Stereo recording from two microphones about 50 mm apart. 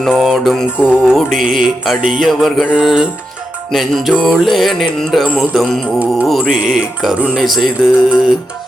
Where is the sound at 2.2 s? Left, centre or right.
Centre.